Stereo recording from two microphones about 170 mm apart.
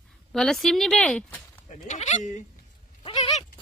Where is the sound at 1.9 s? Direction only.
45° left (ahead or behind).